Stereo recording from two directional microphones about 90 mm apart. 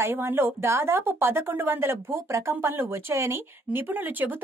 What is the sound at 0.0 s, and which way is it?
Speech, 25° right (ahead or behind).